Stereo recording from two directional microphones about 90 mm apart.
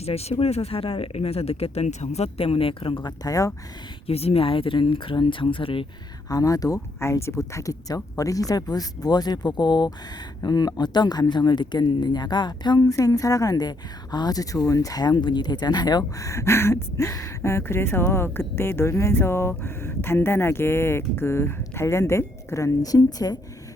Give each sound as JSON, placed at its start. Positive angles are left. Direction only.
{"t": 0.3, "sound": "speech", "side_deg": 90}
{"t": 3.0, "sound": "a woman's voice", "side_deg": 40}
{"t": 4.0, "sound": "speech", "side_deg": 90}
{"t": 6.2, "sound": "speech", "side_deg": 45}
{"t": 7.0, "sound": "speech", "side_deg": 30}
{"t": 12.8, "sound": "a woman's voice", "side_deg": 40}